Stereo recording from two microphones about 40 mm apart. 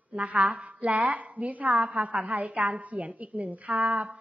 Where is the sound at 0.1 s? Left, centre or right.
Right.